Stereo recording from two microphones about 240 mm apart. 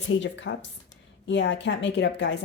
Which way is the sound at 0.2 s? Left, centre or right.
Left.